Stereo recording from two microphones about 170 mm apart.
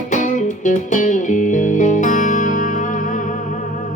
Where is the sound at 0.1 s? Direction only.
50° left (ahead or behind).